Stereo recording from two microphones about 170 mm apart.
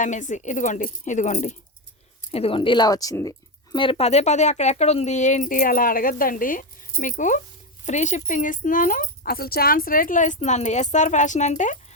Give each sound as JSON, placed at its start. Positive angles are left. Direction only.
{"t": 0.0, "sound": "speech", "side_deg": 45}